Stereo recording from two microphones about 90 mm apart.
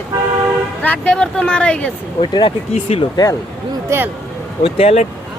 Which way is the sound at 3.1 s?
40° left (ahead or behind).